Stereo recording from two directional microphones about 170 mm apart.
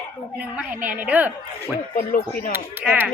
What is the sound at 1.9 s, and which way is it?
Speech, 55° left (ahead or behind).